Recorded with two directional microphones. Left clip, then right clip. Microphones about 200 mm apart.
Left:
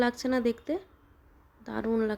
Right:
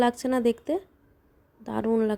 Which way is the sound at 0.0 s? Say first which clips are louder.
Right 4 dB; 20° right (ahead or behind).